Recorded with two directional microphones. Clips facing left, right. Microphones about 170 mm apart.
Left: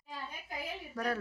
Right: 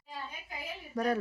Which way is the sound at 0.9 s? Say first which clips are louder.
Right 5 dB; 20° right (ahead or behind).